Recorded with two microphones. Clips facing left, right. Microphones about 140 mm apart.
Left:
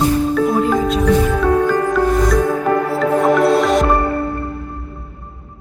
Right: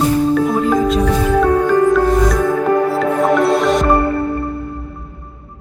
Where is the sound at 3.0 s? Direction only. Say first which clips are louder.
Even; centre (ahead or behind).